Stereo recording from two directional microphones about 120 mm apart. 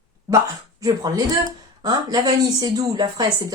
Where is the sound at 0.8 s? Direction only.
30° right (ahead or behind).